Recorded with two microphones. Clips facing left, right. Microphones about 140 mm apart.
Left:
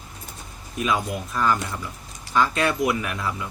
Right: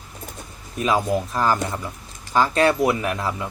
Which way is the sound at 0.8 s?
35° right (ahead or behind).